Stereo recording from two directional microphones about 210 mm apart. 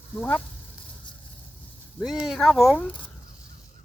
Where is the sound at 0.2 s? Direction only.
5° left (ahead or behind).